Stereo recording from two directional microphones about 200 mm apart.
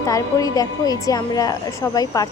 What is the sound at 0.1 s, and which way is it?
A woman's voice, 15° left (ahead or behind).